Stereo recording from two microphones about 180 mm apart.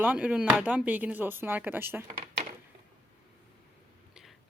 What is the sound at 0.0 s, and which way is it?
Speech, 5° right (ahead or behind).